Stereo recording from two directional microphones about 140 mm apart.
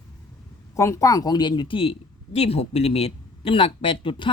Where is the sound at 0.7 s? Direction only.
20° left (ahead or behind); by 4.3 s 40° left (ahead or behind).